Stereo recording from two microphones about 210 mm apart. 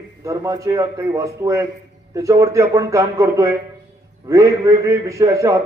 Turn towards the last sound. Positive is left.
turn(degrees=-15)  # may be behind; listen again after turning